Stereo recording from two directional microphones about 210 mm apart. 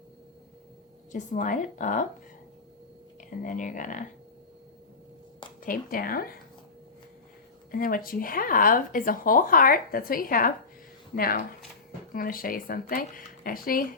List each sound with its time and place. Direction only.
1.1 s speech: 35° left (ahead or behind)
3.2 s speech: 40° left (ahead or behind)
5.6 s speech: 40° left (ahead or behind)
7.7 s speech: 40° left (ahead or behind)
12.1 s speech: 45° left (ahead or behind)